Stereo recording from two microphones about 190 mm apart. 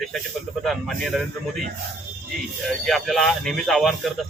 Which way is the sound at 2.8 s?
Centre (ahead or behind).